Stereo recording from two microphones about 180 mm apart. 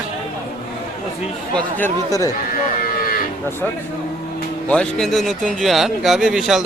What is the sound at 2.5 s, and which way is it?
Sheep, 50° left (ahead or behind).